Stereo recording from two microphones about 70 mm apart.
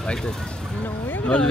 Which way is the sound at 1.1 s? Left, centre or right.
Left.